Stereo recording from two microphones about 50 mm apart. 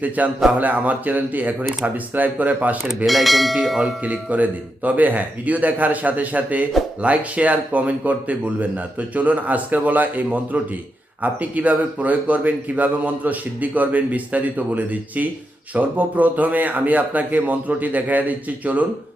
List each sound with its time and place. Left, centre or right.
0.2 s a man's voice: right
3.1 s speech: centre
4.0 s a man's voice: right